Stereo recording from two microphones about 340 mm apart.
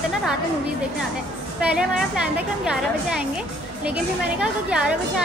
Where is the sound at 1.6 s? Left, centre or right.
Centre.